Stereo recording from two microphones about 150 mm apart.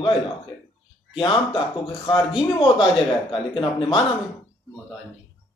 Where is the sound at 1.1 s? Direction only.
35° left (ahead or behind).